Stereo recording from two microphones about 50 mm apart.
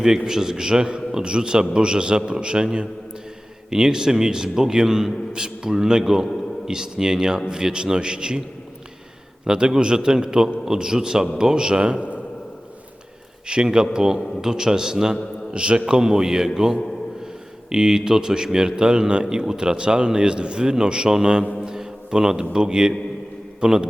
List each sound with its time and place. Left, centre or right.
0.3 s a man's voice: centre
9.4 s a man's voice: centre
13.5 s a man's voice: centre
21.6 s a sound: centre
22.5 s a man's voice: centre